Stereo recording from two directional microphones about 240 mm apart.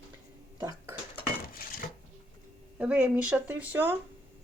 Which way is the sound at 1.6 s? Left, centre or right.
Left.